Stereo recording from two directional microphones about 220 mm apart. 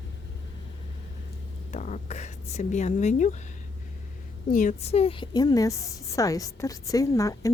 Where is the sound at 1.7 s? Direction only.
35° left (ahead or behind).